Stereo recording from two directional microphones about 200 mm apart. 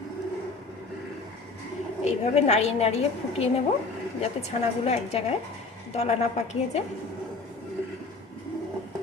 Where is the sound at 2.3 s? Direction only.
35° left (ahead or behind).